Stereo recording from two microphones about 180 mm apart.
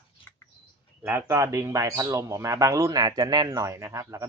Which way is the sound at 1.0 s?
15° right (ahead or behind).